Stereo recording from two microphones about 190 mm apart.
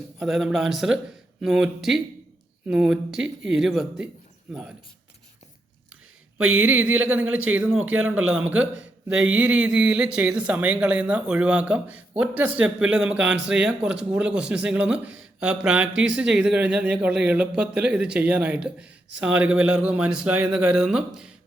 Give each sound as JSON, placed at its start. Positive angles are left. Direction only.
{"t": 0.2, "sound": "speech", "side_deg": 0}
{"t": 6.4, "sound": "a sound", "side_deg": -90}
{"t": 7.1, "sound": "a man's voice", "side_deg": -5}